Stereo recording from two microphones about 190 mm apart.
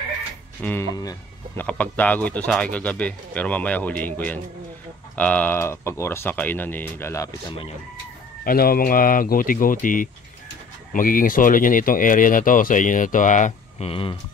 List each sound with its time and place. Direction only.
0.6 s speech: 10° left (ahead or behind)
8.5 s speech: 50° left (ahead or behind); by 14.1 s 30° left (ahead or behind)